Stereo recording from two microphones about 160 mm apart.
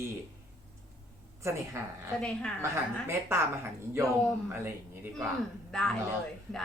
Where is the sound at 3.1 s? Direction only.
15° right (ahead or behind).